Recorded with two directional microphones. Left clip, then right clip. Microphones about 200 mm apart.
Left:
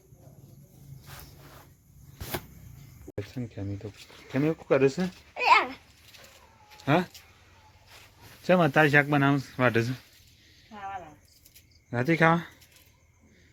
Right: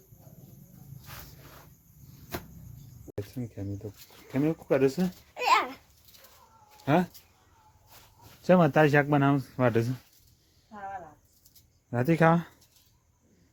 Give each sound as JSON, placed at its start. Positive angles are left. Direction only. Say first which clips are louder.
{"t": 3.3, "sound": "speech", "louder": "left 1 dB", "side_deg": 5}
{"t": 5.3, "sound": "a sound", "louder": "left 3 dB", "side_deg": 40}
{"t": 6.8, "sound": "speech", "louder": "left 1 dB", "side_deg": -5}
{"t": 8.4, "sound": "speech", "louder": "even", "side_deg": -10}
{"t": 11.9, "sound": "speech", "louder": "left 1 dB", "side_deg": -15}